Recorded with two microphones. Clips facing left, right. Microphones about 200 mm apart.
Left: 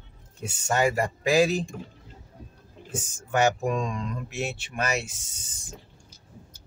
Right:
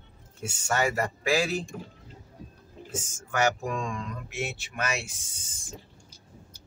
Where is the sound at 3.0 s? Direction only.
20° left (ahead or behind).